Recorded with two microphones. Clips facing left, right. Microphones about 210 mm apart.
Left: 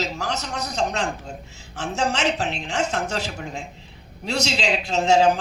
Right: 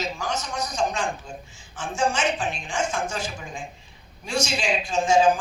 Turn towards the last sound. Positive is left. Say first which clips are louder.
# left 1 dB
turn(degrees=65)  # may be behind; listen again after turning